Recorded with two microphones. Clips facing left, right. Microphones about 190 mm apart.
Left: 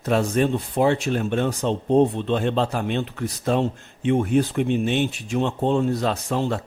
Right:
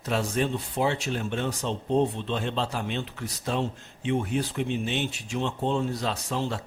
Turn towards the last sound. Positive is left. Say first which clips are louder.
# left 6 dB
turn(degrees=55)  # may be behind; listen again after turning